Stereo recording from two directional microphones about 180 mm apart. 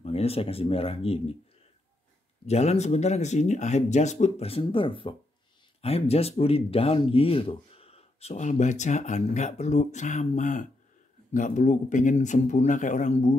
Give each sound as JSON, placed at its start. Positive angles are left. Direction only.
{"t": 0.0, "sound": "speech", "side_deg": 35}
{"t": 2.4, "sound": "speech", "side_deg": 35}